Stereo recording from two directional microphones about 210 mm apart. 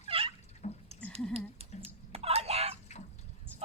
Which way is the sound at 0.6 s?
35° left (ahead or behind).